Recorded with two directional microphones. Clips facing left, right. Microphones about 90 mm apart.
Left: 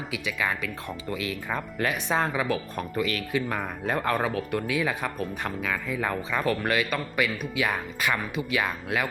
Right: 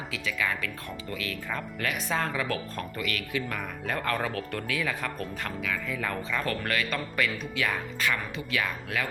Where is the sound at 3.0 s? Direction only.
30° left (ahead or behind).